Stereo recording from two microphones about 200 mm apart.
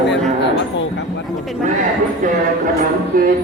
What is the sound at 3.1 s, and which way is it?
Speech, 45° right (ahead or behind).